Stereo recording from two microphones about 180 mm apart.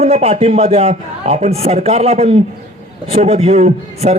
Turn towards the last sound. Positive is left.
turn(degrees=-35)  # may be behind; listen again after turning